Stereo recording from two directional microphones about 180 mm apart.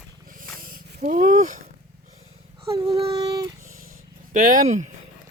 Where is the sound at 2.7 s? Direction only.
20° right (ahead or behind).